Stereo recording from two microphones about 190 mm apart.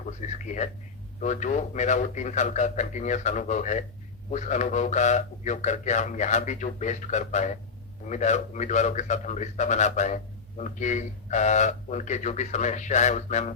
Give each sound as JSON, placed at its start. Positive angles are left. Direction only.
{"t": 0.2, "sound": "a man's voice", "side_deg": 40}